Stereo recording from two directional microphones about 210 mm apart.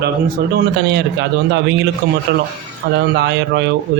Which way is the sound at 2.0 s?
50° right (ahead or behind).